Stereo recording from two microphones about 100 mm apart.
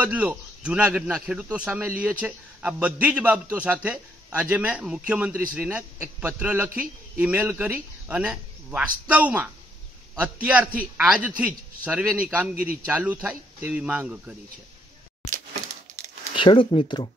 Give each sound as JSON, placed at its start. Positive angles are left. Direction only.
{"t": 0.0, "sound": "a man's voice", "side_deg": -15}
{"t": 16.3, "sound": "speech", "side_deg": 60}